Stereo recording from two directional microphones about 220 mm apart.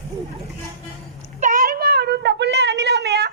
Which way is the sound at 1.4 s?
40° right (ahead or behind).